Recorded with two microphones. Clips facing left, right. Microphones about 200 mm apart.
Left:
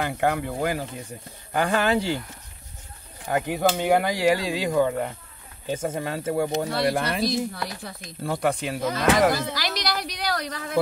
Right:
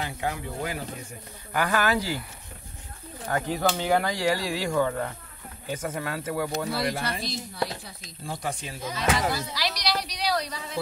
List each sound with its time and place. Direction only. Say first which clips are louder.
0.0 s speech: left 7 dB; 60° left (ahead or behind)
1.5 s speech: left 3 dB; 25° left (ahead or behind)
3.3 s speech: left 3 dB; 20° left (ahead or behind)
7.0 s speech: left 6 dB; 60° left (ahead or behind)
7.5 s a woman's voice: right 3 dB; 25° right (ahead or behind)
7.8 s speech: left 8 dB; 60° left (ahead or behind)
9.5 s a sound: left 1 dB; 50° left (ahead or behind)